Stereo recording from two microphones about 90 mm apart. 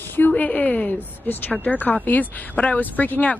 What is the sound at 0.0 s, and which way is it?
A woman's voice, 20° left (ahead or behind).